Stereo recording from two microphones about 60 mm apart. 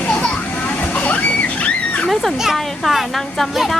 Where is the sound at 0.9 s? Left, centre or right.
Left.